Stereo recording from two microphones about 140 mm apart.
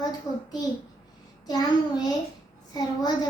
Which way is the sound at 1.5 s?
25° left (ahead or behind).